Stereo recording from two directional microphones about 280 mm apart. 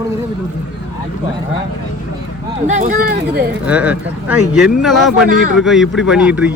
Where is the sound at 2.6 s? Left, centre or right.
Right.